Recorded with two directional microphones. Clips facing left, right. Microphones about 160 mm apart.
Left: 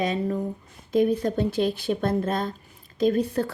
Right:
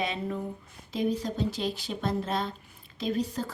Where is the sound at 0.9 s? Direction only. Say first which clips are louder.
Left 7 dB; 55° left (ahead or behind).